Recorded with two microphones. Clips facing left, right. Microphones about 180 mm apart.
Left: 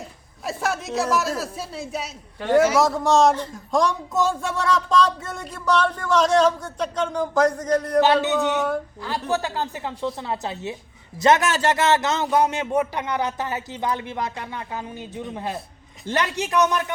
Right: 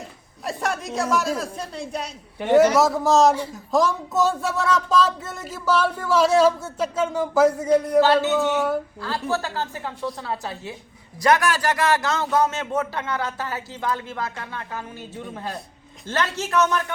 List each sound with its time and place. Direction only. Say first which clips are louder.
0.4 s a woman's voice: even; centre (ahead or behind)
8.0 s a man's voice: even; 20° left (ahead or behind)
8.5 s a woman's voice: right 1 dB; 5° right (ahead or behind)
9.3 s a woman's voice: left 3 dB; 15° left (ahead or behind)